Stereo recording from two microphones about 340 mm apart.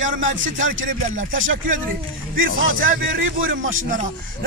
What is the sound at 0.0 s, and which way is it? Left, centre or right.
A man's voice, right.